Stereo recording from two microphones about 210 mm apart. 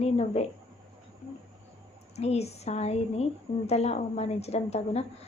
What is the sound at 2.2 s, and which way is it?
A woman's voice, 30° left (ahead or behind).